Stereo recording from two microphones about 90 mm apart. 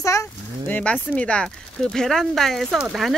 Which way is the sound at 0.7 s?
15° left (ahead or behind).